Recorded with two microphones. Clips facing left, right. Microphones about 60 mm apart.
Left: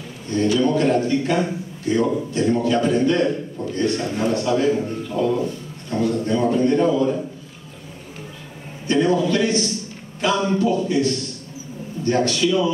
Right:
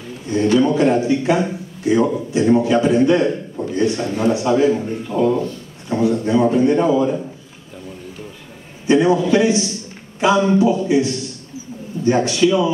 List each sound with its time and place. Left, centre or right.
0.6 s a man's voice: centre
8.8 s a man's voice: centre